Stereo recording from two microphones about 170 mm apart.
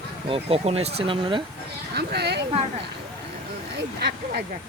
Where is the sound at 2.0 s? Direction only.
75° right (ahead or behind).